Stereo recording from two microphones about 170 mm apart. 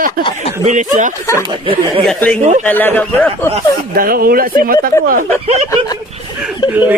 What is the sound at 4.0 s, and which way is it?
Speech, 60° right (ahead or behind).